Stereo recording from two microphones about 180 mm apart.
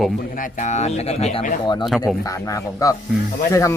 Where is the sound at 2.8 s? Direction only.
20° left (ahead or behind).